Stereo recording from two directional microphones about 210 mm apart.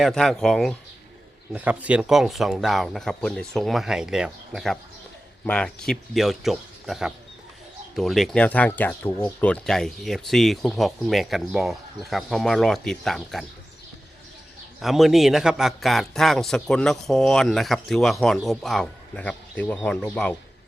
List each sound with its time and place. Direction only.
0.0 s speech: centre (ahead or behind)
14.8 s speech: centre (ahead or behind)